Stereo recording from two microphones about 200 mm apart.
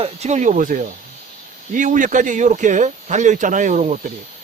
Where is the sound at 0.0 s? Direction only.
35° right (ahead or behind).